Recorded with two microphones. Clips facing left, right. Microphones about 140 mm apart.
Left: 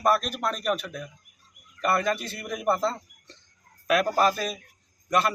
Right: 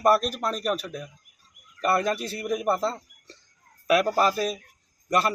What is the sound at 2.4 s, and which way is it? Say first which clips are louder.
Speech: right 1 dB; 5° right (ahead or behind).